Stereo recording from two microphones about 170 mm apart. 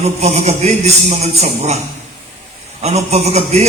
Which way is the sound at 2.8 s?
40° right (ahead or behind).